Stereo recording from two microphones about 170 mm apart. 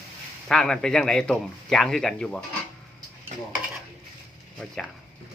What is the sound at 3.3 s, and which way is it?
Dishes, 45° right (ahead or behind).